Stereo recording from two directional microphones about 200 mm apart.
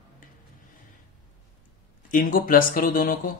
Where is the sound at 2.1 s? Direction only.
45° left (ahead or behind).